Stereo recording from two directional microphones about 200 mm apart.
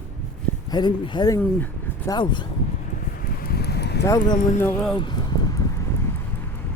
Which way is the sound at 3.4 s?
50° left (ahead or behind).